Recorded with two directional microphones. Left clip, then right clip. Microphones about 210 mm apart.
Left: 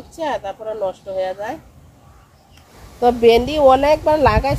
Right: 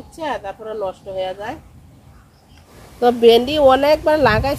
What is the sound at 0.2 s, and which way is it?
Speech, 5° right (ahead or behind).